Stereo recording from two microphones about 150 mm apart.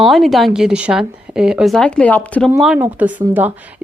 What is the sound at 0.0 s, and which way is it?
Speech, centre (ahead or behind).